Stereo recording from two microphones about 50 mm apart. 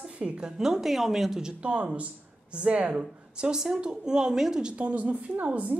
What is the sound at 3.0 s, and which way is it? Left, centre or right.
A woman's voice, centre.